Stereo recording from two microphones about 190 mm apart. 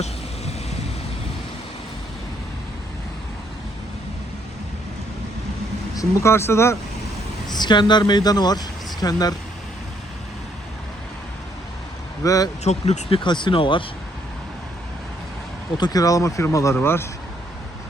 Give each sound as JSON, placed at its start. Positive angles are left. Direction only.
{"t": 5.9, "sound": "speech", "side_deg": 15}
{"t": 12.2, "sound": "speech", "side_deg": 15}
{"t": 12.6, "sound": "speech", "side_deg": 35}
{"t": 15.8, "sound": "speech", "side_deg": 20}